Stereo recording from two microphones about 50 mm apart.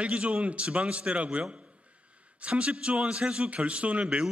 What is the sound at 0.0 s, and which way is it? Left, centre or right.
A man's voice, right.